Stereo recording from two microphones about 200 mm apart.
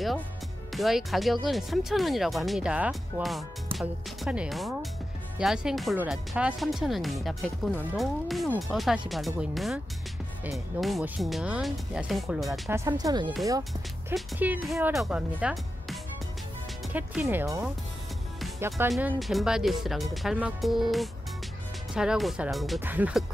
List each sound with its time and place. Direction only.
0.7 s speech: centre (ahead or behind)
12.6 s speech: 15° right (ahead or behind)
14.1 s speech: 5° right (ahead or behind)
18.9 s speech: 5° right (ahead or behind)